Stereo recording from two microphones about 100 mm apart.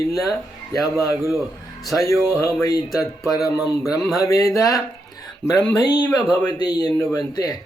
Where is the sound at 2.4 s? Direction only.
30° left (ahead or behind).